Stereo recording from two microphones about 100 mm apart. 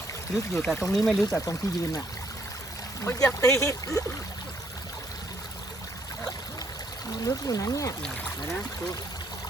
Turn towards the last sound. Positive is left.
turn(degrees=35)  # may be behind; listen again after turning